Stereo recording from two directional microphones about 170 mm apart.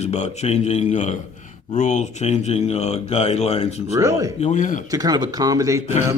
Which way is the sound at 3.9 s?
20° right (ahead or behind).